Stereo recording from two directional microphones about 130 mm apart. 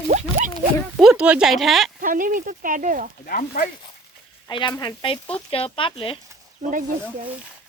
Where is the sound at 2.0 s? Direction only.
90° right.